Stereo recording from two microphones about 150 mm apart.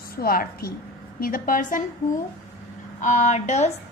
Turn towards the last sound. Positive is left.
turn(degrees=50)  # may be behind; listen again after turning